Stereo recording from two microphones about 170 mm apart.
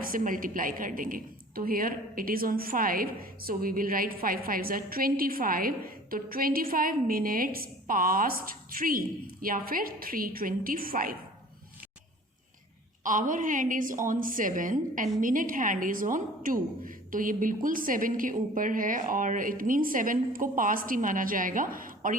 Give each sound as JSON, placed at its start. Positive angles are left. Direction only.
{"t": 0.0, "sound": "a woman's voice", "side_deg": -55}
{"t": 13.0, "sound": "a woman's voice", "side_deg": -50}